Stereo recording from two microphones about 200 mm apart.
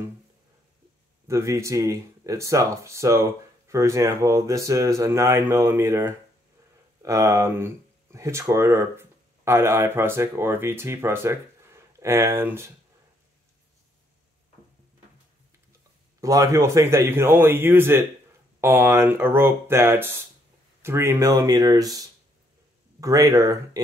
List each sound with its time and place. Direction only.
1.2 s speech: 15° right (ahead or behind)
16.2 s speech: 15° right (ahead or behind)